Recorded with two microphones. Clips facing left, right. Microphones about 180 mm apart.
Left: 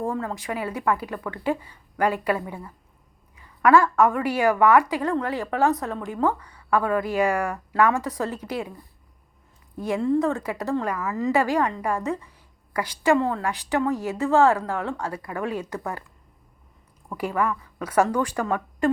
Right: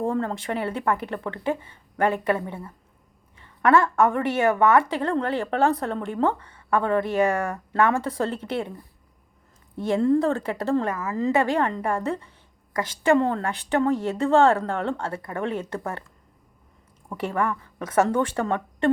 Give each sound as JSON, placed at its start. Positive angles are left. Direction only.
{"t": 0.0, "sound": "a woman's voice", "side_deg": -30}
{"t": 9.7, "sound": "a woman's voice", "side_deg": -30}
{"t": 17.1, "sound": "a woman's voice", "side_deg": -25}